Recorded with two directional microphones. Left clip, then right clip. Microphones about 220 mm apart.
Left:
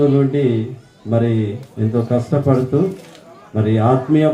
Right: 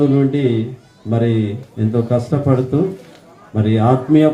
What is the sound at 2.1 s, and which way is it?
Speech, 50° right (ahead or behind).